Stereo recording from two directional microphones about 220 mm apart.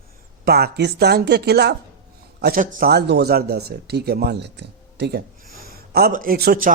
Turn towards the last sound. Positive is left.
turn(degrees=-45)  # may be behind; listen again after turning